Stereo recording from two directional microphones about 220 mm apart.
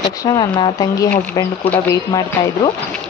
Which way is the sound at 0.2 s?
15° left (ahead or behind).